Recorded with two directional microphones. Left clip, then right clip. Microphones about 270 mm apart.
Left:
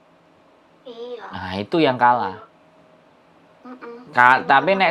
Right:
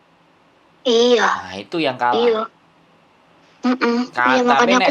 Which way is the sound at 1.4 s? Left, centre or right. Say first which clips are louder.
Left 3 dB; left.